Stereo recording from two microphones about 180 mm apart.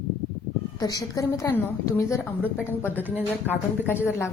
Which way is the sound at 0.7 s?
20° left (ahead or behind).